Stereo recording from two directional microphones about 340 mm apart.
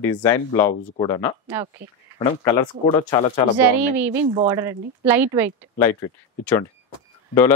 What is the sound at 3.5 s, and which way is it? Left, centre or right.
A woman's voice, centre.